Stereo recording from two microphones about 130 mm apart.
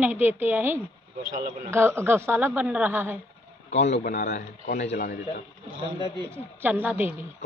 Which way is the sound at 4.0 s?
80° left.